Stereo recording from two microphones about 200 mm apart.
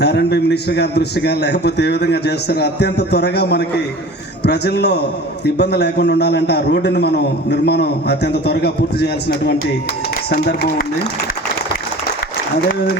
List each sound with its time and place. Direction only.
0.0 s a man's voice: 55° left (ahead or behind)
10.2 s speech: 50° left (ahead or behind)